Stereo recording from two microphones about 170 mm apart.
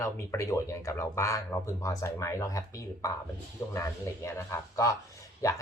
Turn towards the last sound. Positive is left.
turn(degrees=20)  # may be behind; listen again after turning